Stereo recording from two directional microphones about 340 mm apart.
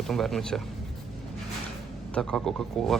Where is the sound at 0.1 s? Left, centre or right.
Centre.